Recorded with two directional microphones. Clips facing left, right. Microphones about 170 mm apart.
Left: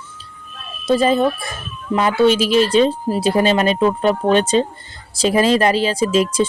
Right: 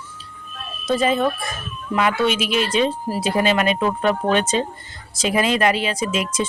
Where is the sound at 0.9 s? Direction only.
35° left (ahead or behind).